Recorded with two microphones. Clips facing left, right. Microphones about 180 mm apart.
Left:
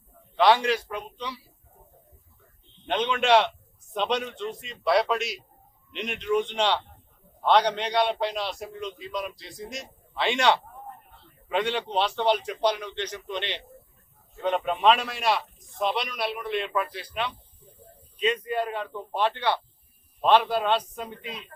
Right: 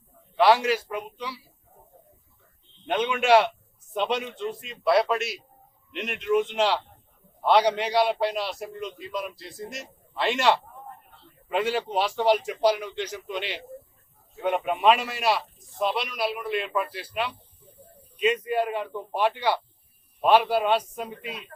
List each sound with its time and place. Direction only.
0.3 s a man's voice: 5° right (ahead or behind)
2.8 s a man's voice: 10° right (ahead or behind)
18.4 s a man's voice: 10° right (ahead or behind)